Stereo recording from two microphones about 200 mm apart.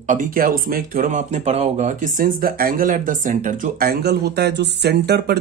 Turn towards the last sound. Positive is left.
turn(degrees=-55)  # may be behind; listen again after turning